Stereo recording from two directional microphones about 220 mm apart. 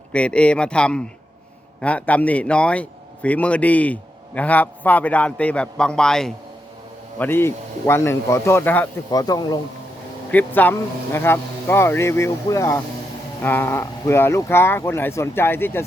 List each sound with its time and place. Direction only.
0.1 s a man's voice: 5° left (ahead or behind)